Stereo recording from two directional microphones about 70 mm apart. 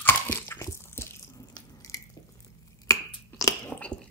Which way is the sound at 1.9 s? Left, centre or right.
Left.